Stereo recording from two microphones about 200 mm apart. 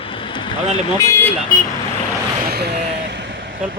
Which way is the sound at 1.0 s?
15° left (ahead or behind).